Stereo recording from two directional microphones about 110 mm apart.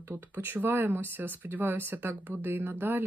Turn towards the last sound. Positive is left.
turn(degrees=-20)  # may be behind; listen again after turning